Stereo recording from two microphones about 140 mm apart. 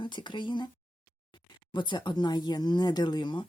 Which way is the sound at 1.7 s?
35° left (ahead or behind).